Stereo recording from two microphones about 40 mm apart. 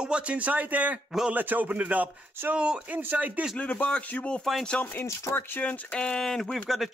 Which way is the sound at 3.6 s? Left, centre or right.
Left.